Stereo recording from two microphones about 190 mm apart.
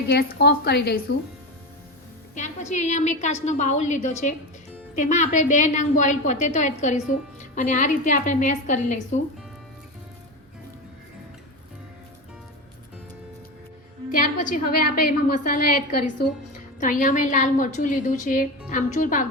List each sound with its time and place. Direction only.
0.1 s speech: 55° left (ahead or behind)
2.3 s a woman's voice: 40° left (ahead or behind)
14.1 s a woman's voice: 45° left (ahead or behind)